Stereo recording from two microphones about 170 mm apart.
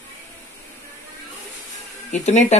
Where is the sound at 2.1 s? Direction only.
45° left (ahead or behind).